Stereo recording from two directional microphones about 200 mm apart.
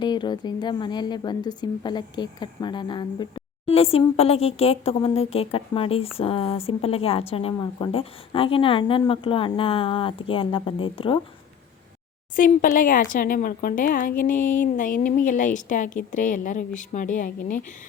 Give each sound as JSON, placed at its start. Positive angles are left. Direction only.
{"t": 0.0, "sound": "a woman's voice", "side_deg": 20}
{"t": 12.4, "sound": "speech", "side_deg": 40}